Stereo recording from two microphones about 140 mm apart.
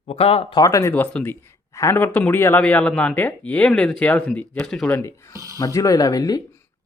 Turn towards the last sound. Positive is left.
turn(degrees=25)  # may be behind; listen again after turning